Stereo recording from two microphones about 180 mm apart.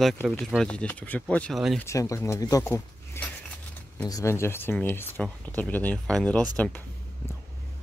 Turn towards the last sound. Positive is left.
turn(degrees=5)  # may be behind; listen again after turning